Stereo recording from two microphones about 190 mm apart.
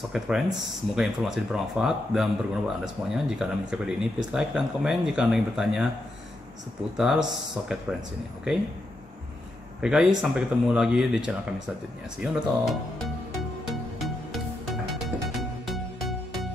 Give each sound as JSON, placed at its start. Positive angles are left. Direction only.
{"t": 0.1, "sound": "speech", "side_deg": 0}
{"t": 7.0, "sound": "speech", "side_deg": 0}
{"t": 9.8, "sound": "speech", "side_deg": -5}
{"t": 13.7, "sound": "music", "side_deg": 0}